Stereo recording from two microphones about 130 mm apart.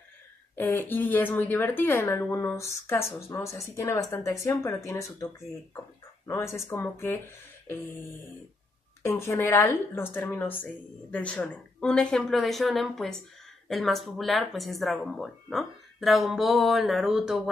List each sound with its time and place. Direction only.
0.6 s a woman's voice: 15° left (ahead or behind)
9.0 s a woman's voice: 20° left (ahead or behind); by 17.4 s 5° right (ahead or behind)